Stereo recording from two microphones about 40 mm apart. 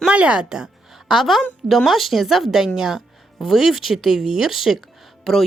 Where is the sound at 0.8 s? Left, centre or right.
Centre.